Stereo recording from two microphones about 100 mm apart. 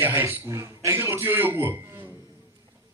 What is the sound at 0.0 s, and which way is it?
A man's voice, 20° right (ahead or behind).